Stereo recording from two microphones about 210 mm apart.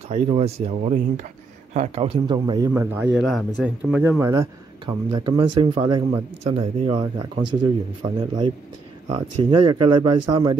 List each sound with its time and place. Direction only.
0.1 s speech: 30° right (ahead or behind)
2.7 s speech: 10° right (ahead or behind)